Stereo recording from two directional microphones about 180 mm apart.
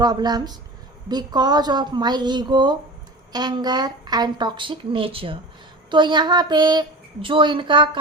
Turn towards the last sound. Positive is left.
turn(degrees=-25)  # may be behind; listen again after turning